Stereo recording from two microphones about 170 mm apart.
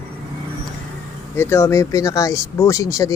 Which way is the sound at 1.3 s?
15° left (ahead or behind).